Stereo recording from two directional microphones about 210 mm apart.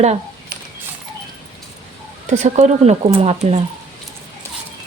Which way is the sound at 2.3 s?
35° right (ahead or behind).